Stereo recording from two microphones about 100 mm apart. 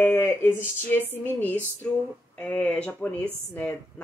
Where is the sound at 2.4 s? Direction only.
15° left (ahead or behind).